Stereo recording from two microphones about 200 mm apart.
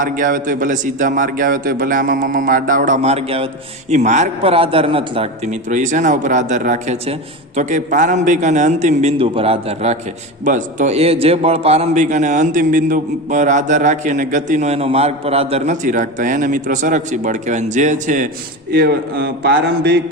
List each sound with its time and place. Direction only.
0.0 s a man's voice: 40° right (ahead or behind)
18.7 s a man's voice: 50° right (ahead or behind)